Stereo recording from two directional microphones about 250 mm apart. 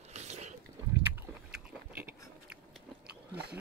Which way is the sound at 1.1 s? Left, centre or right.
Centre.